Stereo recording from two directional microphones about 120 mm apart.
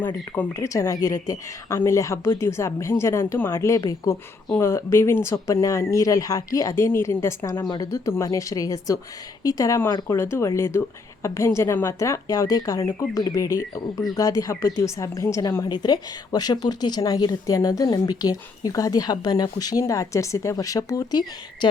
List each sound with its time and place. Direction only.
0.0 s a woman's voice: 15° left (ahead or behind); by 21.7 s 35° left (ahead or behind)